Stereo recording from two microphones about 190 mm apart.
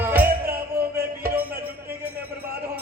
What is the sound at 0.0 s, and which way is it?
Music, 10° right (ahead or behind).